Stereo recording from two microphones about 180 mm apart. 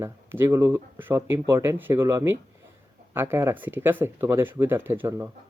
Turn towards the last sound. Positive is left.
turn(degrees=-10)  # may be behind; listen again after turning